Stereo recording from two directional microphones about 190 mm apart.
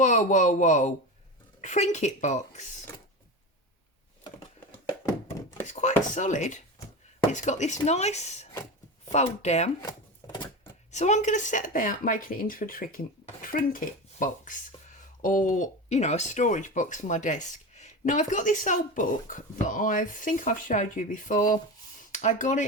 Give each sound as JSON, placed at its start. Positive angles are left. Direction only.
{"t": 0.0, "sound": "speech", "side_deg": 40}
{"t": 5.6, "sound": "speech", "side_deg": 40}
{"t": 10.2, "sound": "a sound", "side_deg": 15}
{"t": 10.9, "sound": "speech", "side_deg": 40}